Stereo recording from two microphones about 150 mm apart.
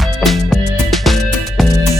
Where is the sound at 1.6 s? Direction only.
Centre (ahead or behind).